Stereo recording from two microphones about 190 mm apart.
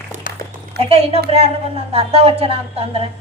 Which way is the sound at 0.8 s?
60° right (ahead or behind).